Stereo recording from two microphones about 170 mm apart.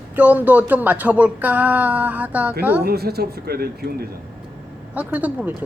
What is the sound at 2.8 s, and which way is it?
Speech, 65° right (ahead or behind).